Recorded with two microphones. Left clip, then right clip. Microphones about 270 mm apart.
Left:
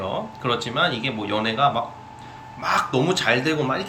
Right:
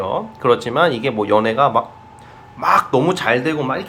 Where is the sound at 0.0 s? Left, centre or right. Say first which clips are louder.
Right 7 dB; centre.